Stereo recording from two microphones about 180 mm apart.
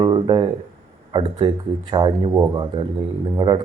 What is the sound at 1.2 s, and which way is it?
A man's voice, 30° right (ahead or behind).